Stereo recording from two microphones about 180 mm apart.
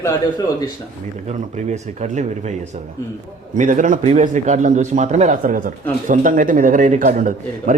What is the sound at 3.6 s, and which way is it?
A man's voice, 45° right (ahead or behind).